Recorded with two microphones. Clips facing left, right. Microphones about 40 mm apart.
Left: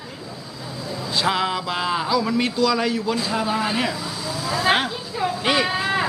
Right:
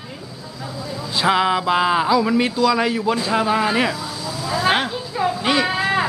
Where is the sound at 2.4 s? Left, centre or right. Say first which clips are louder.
Right 3 dB; centre.